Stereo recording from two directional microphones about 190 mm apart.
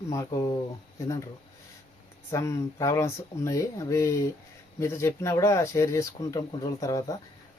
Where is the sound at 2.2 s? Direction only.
15° left (ahead or behind).